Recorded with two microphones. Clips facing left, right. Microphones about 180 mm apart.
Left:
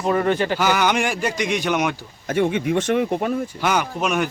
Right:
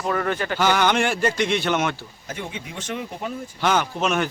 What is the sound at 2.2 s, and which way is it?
Speech, 65° left (ahead or behind).